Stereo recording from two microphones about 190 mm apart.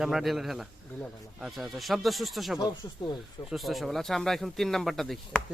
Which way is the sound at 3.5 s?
Centre (ahead or behind).